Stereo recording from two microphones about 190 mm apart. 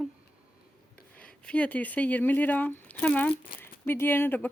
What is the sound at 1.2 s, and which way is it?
Speech, 5° left (ahead or behind).